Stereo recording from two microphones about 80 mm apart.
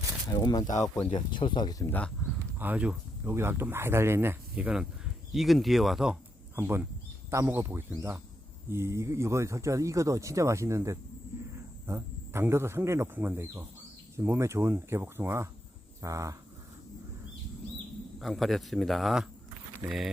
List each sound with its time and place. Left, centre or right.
0.3 s speech: left
1.1 s speech: left
1.9 s speech: centre
2.6 s speech: centre
3.2 s speech: right
4.5 s speech: centre
5.3 s speech: centre
6.6 s speech: right
16.0 s speech: right
18.2 s speech: centre